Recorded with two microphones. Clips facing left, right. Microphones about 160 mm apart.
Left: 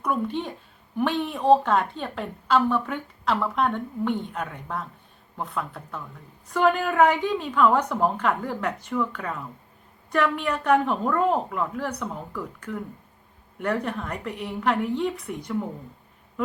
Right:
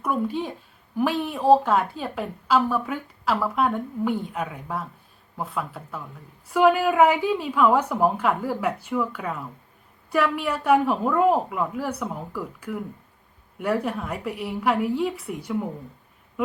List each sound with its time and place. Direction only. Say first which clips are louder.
0.0 s a woman's voice: right 1 dB; 5° right (ahead or behind)